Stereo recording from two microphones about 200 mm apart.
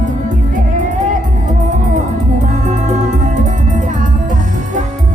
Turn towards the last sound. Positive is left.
turn(degrees=-40)  # may be behind; listen again after turning